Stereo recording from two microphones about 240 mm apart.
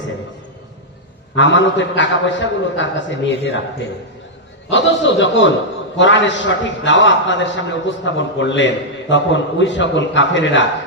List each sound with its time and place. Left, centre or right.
1.3 s a man's voice: left
4.6 s a man's voice: left